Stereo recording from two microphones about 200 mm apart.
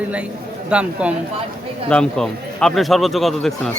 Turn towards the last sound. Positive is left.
turn(degrees=0)  # may be behind; listen again after turning